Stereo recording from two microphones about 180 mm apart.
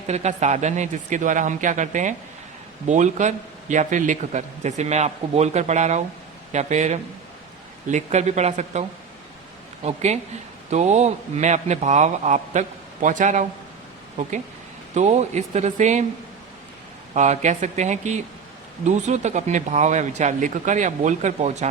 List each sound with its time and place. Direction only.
0.1 s a man's voice: 40° right (ahead or behind)
9.8 s a man's voice: 40° right (ahead or behind)
17.2 s a man's voice: 40° right (ahead or behind)